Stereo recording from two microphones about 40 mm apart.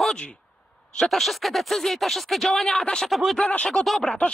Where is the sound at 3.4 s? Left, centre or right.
Left.